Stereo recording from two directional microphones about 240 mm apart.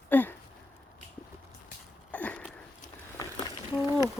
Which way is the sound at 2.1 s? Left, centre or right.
Centre.